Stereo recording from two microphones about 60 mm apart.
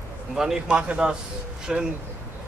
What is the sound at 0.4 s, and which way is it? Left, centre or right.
Speech, centre.